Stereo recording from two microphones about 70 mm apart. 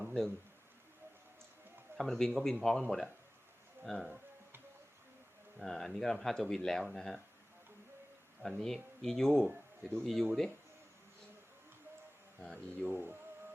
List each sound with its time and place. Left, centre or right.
0.0 s a sound: centre
2.0 s speech: centre
5.5 s speech: centre
8.4 s speech: centre
12.9 s speech: right